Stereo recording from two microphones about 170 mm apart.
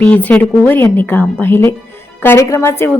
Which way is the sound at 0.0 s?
10° left (ahead or behind).